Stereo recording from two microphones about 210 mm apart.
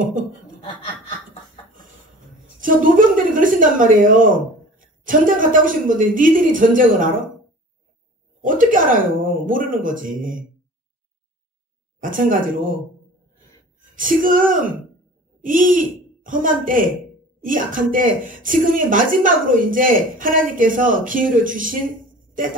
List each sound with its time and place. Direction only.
0.0 s chuckle: 40° right (ahead or behind)
2.6 s speech: 40° right (ahead or behind)
8.5 s speech: 40° right (ahead or behind)
12.0 s speech: 40° right (ahead or behind)
13.7 s speech: 40° right (ahead or behind)